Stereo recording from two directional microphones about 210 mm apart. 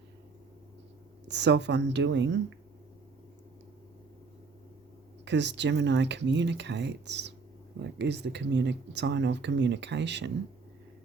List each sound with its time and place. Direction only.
1.3 s speech: 55° right (ahead or behind)
5.2 s speech: 55° right (ahead or behind)